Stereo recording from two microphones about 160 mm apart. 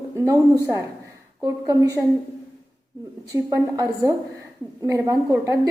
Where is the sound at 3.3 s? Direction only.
15° right (ahead or behind).